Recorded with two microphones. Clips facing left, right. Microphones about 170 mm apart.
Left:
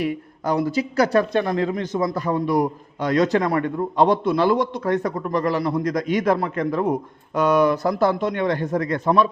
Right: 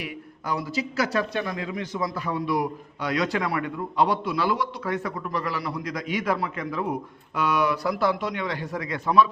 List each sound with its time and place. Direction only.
0.0 s speech: 45° left (ahead or behind)